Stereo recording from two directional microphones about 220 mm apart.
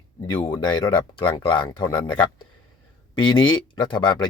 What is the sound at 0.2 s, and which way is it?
Speech, 15° left (ahead or behind).